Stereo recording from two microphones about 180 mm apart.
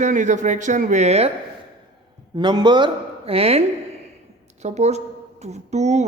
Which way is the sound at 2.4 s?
25° right (ahead or behind).